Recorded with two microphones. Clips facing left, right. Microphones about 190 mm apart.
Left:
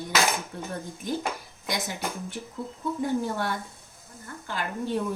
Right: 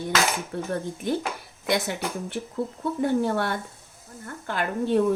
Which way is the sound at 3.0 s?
65° right (ahead or behind).